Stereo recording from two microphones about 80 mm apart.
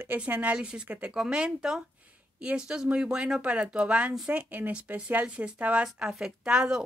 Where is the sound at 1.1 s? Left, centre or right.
Centre.